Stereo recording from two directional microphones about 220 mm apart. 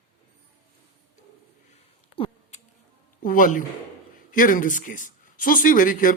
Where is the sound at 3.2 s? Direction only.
40° left (ahead or behind).